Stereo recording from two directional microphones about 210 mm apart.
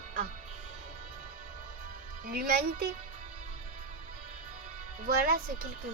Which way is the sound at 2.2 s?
45° right (ahead or behind).